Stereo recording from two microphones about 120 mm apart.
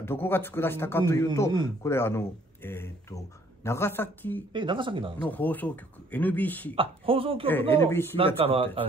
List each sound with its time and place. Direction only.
0.0 s speech: 20° left (ahead or behind)
4.5 s a woman's voice: 45° right (ahead or behind)
5.2 s speech: 15° left (ahead or behind)
6.7 s a woman's voice: 50° right (ahead or behind)
7.7 s speech: 20° left (ahead or behind)
8.4 s a woman's voice: 50° right (ahead or behind)